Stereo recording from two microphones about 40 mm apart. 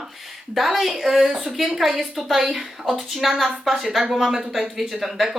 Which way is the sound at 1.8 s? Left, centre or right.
Centre.